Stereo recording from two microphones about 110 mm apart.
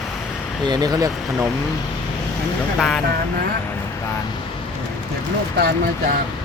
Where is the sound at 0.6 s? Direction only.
40° right (ahead or behind).